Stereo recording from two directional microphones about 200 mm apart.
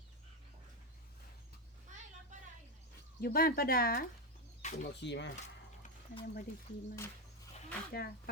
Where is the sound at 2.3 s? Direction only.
40° right (ahead or behind).